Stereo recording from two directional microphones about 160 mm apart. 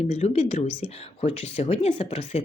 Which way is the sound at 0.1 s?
45° left (ahead or behind).